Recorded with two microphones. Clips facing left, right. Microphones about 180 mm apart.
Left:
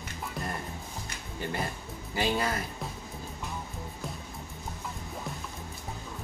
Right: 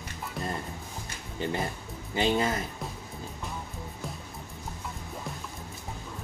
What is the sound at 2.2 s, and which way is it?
Speech, 20° right (ahead or behind).